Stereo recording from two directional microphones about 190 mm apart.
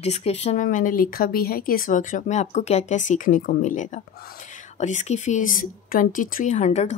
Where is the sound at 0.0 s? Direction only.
35° left (ahead or behind).